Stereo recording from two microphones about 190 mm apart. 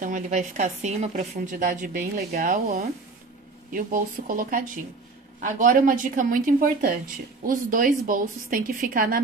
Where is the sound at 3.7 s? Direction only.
45° right (ahead or behind).